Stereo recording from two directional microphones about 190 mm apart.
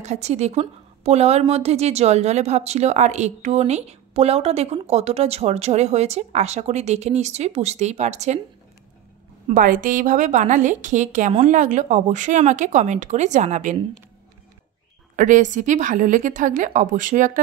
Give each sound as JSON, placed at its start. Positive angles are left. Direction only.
{"t": 0.0, "sound": "a woman's voice", "side_deg": -35}
{"t": 9.5, "sound": "a woman's voice", "side_deg": -45}
{"t": 15.1, "sound": "a woman's voice", "side_deg": -40}